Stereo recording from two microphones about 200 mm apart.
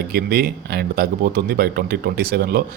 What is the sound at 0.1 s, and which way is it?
Speech, 50° right (ahead or behind).